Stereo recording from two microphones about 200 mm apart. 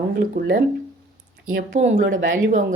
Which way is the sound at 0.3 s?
45° right (ahead or behind).